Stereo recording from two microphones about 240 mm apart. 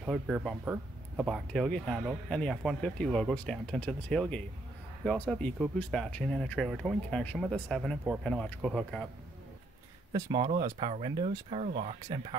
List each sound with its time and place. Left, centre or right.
0.0 s speech: centre
10.1 s speech: centre